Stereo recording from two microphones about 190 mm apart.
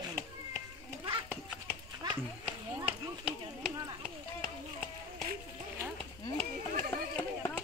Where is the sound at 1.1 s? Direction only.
15° right (ahead or behind).